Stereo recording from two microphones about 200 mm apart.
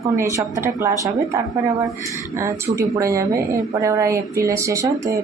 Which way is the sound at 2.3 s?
15° right (ahead or behind).